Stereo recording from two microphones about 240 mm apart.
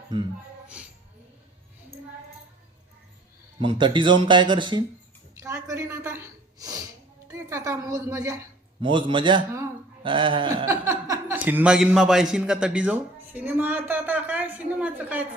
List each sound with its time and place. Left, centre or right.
3.6 s a woman's voice: centre